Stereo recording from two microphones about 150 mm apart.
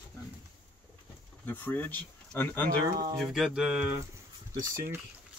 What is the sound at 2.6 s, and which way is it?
Speech, 70° right (ahead or behind).